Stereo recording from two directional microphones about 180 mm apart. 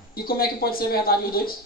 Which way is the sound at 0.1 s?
55° left (ahead or behind).